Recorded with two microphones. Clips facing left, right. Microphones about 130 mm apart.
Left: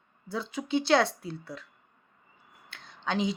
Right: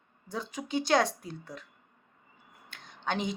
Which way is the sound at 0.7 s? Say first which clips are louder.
Left 2 dB; 45° right (ahead or behind).